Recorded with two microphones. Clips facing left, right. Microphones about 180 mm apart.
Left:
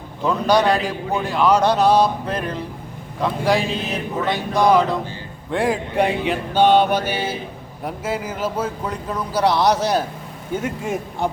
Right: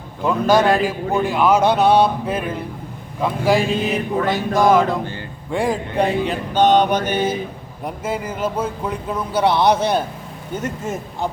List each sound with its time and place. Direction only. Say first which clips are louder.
0.3 s a man's voice: right 2 dB; 5° right (ahead or behind)
2.0 s mantra: right 2 dB; 5° right (ahead or behind)
3.2 s a man's voice: right 2 dB; 5° right (ahead or behind)
4.8 s speech: right 1 dB; 60° right (ahead or behind)
5.5 s a sound: even; centre (ahead or behind)
7.9 s a man's voice: right 1 dB; 5° left (ahead or behind)
10.5 s a sound: left 1 dB; 10° left (ahead or behind)